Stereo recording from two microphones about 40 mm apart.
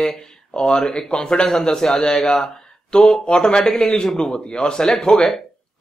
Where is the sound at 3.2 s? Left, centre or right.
Left.